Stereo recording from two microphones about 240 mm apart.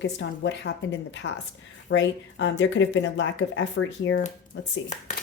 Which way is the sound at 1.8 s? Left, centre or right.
Left.